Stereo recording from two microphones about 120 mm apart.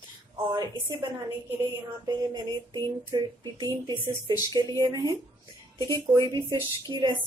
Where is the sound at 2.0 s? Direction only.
35° right (ahead or behind).